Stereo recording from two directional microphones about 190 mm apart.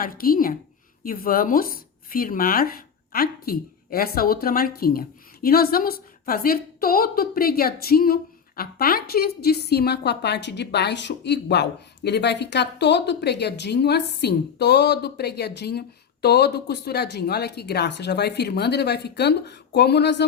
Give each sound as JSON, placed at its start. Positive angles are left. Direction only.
{"t": 0.0, "sound": "speech", "side_deg": 50}